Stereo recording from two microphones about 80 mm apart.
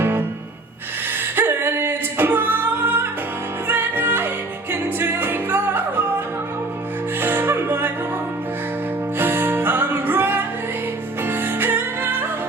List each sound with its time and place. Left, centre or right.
1.4 s singing: right
3.7 s music: right
9.1 s music: right